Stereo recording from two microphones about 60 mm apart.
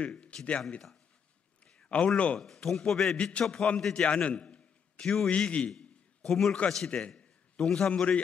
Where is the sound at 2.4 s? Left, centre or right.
Centre.